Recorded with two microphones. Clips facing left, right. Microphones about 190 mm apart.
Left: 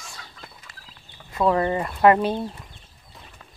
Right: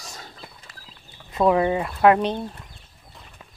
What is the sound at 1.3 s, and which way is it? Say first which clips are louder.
Speech: right 2 dB; 15° right (ahead or behind).